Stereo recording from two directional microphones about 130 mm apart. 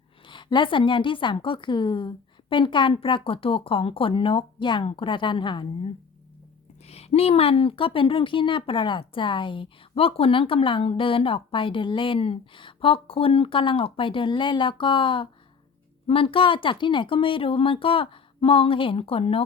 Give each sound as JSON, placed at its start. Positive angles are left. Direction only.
{"t": 0.3, "sound": "a woman's voice", "side_deg": 40}
{"t": 6.8, "sound": "a woman's voice", "side_deg": 55}